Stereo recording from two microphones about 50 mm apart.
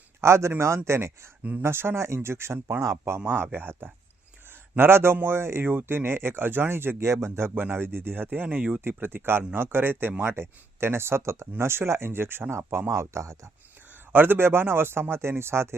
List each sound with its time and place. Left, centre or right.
0.2 s speech: right
1.6 s speech: right
2.8 s speech: right
3.2 s speech: right
5.6 s speech: right
8.8 s speech: right
10.2 s speech: right
11.5 s speech: right
12.9 s speech: right
14.1 s speech: right